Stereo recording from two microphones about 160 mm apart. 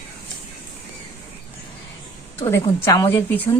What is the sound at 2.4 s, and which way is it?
Speech, 20° left (ahead or behind).